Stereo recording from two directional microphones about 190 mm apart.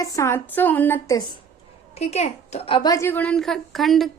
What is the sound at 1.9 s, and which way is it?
A woman's voice, 35° left (ahead or behind).